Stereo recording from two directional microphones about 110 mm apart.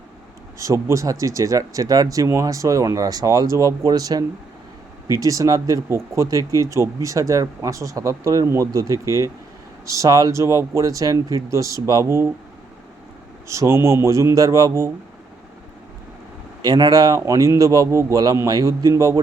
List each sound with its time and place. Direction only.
0.6 s speech: 30° right (ahead or behind)
5.2 s speech: 30° right (ahead or behind)
13.5 s speech: 25° right (ahead or behind)
16.6 s speech: 35° right (ahead or behind)